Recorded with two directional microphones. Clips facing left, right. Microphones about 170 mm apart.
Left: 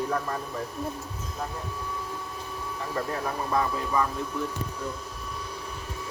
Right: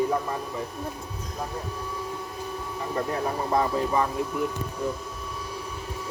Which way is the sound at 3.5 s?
30° right (ahead or behind).